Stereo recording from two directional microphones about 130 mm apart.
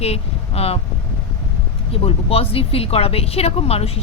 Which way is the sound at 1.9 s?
50° left (ahead or behind).